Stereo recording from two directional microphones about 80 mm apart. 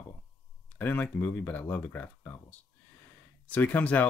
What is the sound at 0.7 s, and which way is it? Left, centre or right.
Speech, left.